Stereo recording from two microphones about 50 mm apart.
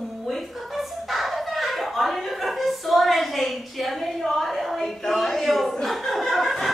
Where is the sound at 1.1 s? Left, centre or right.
Centre.